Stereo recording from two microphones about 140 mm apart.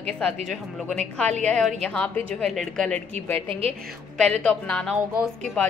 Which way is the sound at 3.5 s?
45° right (ahead or behind).